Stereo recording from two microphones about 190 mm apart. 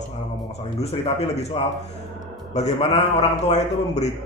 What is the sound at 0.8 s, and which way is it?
A man's voice, 35° left (ahead or behind).